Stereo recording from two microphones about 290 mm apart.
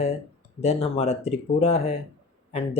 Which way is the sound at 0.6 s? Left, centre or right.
Left.